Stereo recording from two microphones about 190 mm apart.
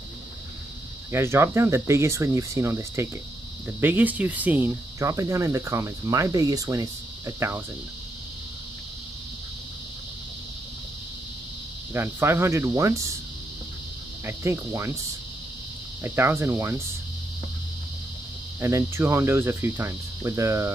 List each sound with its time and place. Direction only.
1.1 s cricket: 15° right (ahead or behind)
11.9 s cricket: 10° right (ahead or behind)
14.2 s cricket: 15° right (ahead or behind)
16.0 s cricket: 10° right (ahead or behind)
18.6 s cricket: 15° right (ahead or behind)